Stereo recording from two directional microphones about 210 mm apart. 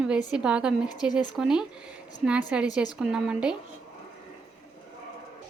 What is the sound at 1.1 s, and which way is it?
Speech, 20° left (ahead or behind).